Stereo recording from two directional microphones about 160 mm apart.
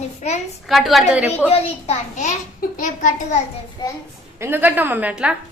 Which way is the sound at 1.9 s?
50° left (ahead or behind).